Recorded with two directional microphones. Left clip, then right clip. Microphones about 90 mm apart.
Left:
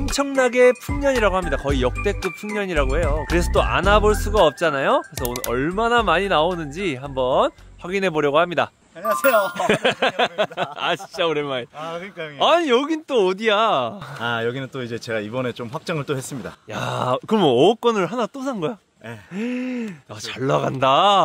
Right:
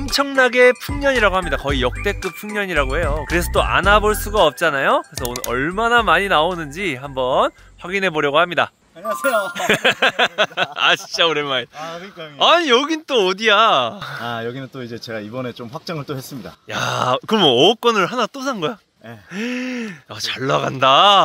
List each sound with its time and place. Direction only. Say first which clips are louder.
0.0 s speech: right 4 dB; 5° left (ahead or behind)
9.5 s speech: right 3 dB; 20° left (ahead or behind)
14.2 s speech: left 4 dB; 60° left (ahead or behind)
16.7 s speech: right 4 dB; 15° left (ahead or behind)
20.2 s speech: right 2 dB; 30° left (ahead or behind)